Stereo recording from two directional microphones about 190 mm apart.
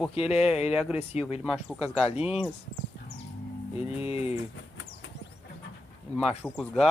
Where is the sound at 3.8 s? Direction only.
30° left (ahead or behind).